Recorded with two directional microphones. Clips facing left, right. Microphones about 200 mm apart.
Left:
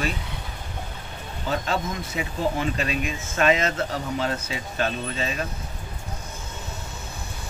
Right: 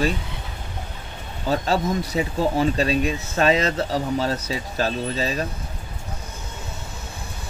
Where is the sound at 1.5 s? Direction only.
35° right (ahead or behind).